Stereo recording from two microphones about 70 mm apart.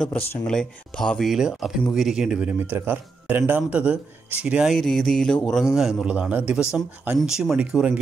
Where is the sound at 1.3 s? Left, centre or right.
Centre.